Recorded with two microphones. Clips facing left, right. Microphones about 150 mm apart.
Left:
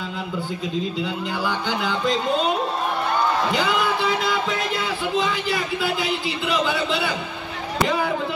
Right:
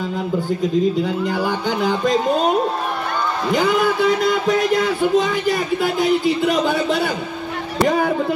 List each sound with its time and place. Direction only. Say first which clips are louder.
1.0 s speech: right 5 dB; 45° right (ahead or behind)
3.5 s speech: right 5 dB; 45° right (ahead or behind)